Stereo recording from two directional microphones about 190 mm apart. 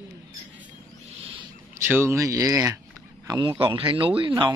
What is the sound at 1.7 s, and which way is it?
Speech, 10° right (ahead or behind).